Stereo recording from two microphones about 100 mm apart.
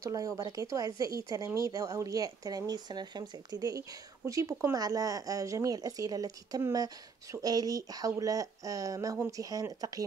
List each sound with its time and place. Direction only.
0.0 s speech: 35° right (ahead or behind)